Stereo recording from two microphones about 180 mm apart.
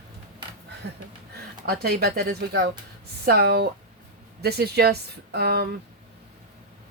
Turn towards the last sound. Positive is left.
turn(degrees=-60)  # may be behind; listen again after turning